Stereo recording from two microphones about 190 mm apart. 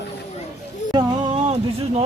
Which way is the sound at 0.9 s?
30° right (ahead or behind).